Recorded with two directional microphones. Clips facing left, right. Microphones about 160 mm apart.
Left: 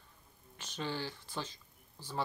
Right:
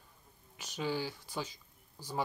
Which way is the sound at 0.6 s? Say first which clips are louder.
Right 3 dB; 10° right (ahead or behind).